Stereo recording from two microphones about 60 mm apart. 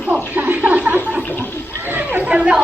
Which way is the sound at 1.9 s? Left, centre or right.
Right.